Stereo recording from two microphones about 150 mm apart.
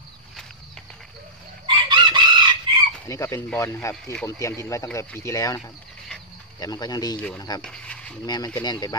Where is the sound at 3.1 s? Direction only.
20° left (ahead or behind).